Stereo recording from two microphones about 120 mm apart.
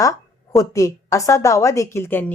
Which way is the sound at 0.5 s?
30° left (ahead or behind).